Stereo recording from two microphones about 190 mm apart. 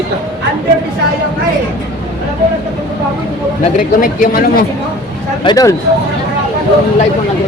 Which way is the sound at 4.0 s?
50° left (ahead or behind).